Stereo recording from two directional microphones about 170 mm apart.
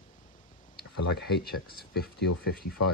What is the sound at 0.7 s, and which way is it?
Speech, 70° left (ahead or behind).